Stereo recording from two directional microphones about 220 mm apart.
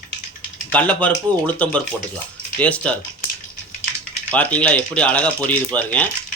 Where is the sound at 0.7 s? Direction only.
5° left (ahead or behind).